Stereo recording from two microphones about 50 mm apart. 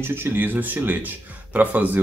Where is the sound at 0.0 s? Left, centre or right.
Right.